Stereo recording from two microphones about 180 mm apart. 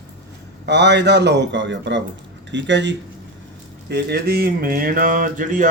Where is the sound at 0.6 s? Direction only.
70° right (ahead or behind).